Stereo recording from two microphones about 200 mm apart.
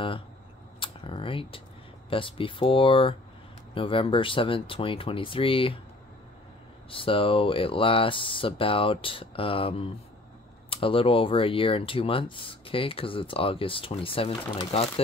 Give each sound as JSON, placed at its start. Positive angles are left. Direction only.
{"t": 0.7, "sound": "computer keyboard", "side_deg": 25}
{"t": 2.0, "sound": "speech", "side_deg": 25}
{"t": 6.9, "sound": "speech", "side_deg": 25}